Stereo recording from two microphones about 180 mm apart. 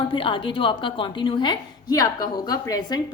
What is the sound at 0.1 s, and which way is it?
A woman's voice, 30° left (ahead or behind).